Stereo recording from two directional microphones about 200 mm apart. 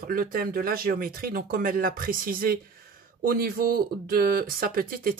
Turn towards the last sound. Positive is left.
turn(degrees=-45)  # may be behind; listen again after turning